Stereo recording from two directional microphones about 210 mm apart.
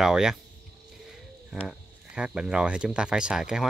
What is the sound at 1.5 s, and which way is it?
Speech, 5° right (ahead or behind).